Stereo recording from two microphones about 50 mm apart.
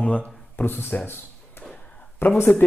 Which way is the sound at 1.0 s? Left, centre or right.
Left.